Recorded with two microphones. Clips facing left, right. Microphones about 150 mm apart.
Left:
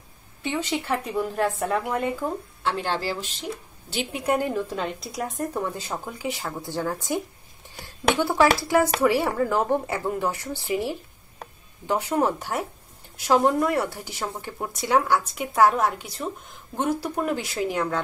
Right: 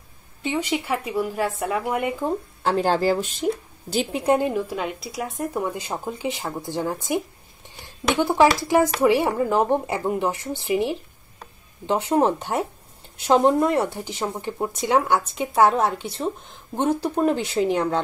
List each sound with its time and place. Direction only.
0.4 s speech: 15° right (ahead or behind)
2.6 s speech: 40° right (ahead or behind)
3.9 s speech: 35° right (ahead or behind); by 4.6 s 20° right (ahead or behind)
4.6 s speech: 5° right (ahead or behind); by 18.0 s 25° right (ahead or behind)